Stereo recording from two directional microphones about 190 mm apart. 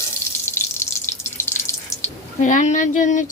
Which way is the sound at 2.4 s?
40° left (ahead or behind).